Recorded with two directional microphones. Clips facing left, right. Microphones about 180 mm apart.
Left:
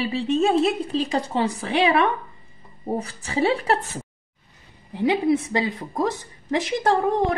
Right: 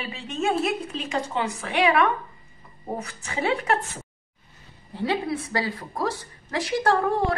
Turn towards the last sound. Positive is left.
turn(degrees=20)  # may be behind; listen again after turning